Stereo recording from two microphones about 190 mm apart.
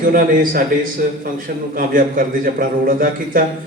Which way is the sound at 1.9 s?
45° right (ahead or behind).